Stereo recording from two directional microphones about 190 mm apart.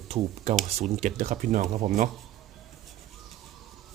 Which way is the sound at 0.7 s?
35° right (ahead or behind).